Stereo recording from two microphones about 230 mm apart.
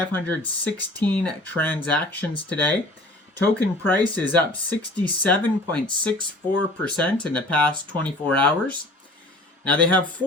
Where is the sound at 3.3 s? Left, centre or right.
Centre.